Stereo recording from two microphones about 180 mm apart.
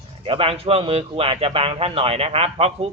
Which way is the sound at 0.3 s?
30° right (ahead or behind).